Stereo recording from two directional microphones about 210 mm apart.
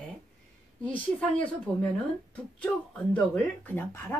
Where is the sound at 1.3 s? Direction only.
5° left (ahead or behind).